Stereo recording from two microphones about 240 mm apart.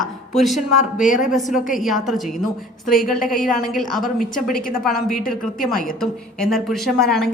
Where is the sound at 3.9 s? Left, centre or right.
Centre.